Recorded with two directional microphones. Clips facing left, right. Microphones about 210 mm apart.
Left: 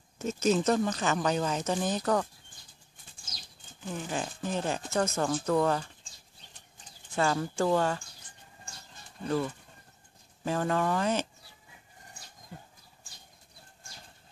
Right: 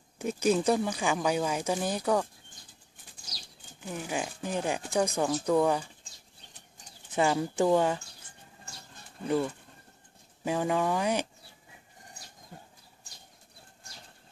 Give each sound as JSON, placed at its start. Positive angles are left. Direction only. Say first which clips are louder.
{"t": 0.2, "sound": "speech", "louder": "even", "side_deg": -10}
{"t": 3.8, "sound": "speech", "louder": "even", "side_deg": -10}
{"t": 7.1, "sound": "speech", "louder": "right 2 dB", "side_deg": -15}
{"t": 9.2, "sound": "speech", "louder": "right 2 dB", "side_deg": -10}